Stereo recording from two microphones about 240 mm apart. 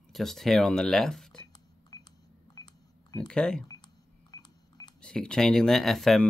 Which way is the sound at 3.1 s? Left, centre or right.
Centre.